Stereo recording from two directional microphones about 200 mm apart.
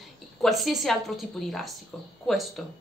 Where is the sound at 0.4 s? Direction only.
Centre (ahead or behind).